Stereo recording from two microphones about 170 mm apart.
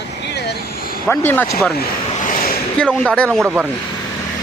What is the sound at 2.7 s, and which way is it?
Speech, 5° left (ahead or behind).